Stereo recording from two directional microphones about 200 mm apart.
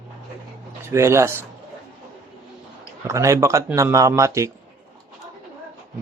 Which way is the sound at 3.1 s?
15° right (ahead or behind).